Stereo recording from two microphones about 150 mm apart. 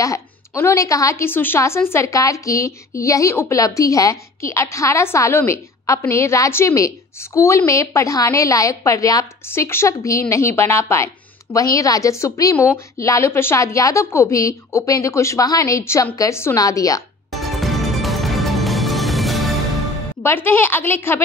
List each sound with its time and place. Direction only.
0.0 s a woman's voice: 20° left (ahead or behind)
17.3 s music: centre (ahead or behind)
20.2 s a woman's voice: 15° left (ahead or behind)